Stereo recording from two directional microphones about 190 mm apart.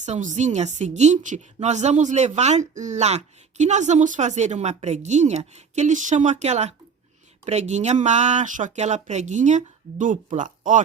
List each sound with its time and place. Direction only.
0.0 s speech: 40° right (ahead or behind)